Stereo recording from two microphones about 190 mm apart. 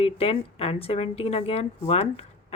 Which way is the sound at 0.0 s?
30° left (ahead or behind).